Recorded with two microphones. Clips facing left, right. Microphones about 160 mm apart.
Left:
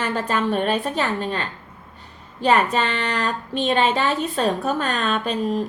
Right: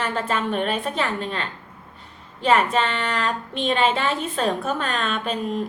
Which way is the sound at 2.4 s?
40° left (ahead or behind).